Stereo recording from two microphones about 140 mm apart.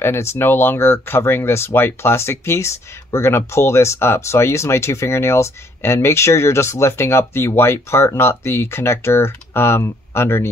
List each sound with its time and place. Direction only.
0.0 s speech: 15° left (ahead or behind)